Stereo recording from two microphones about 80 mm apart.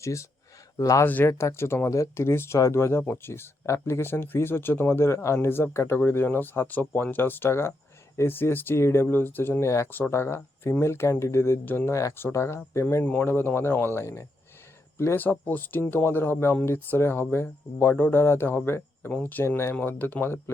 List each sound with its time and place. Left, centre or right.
0.0 s speech: left
1.0 s speech: left
1.3 s speech: left